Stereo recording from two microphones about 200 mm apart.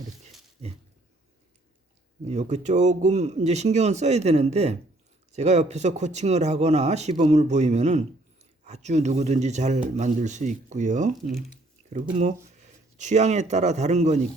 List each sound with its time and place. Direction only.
0.6 s a sound: 30° right (ahead or behind)
2.2 s speech: 35° right (ahead or behind)
13.0 s speech: 35° right (ahead or behind)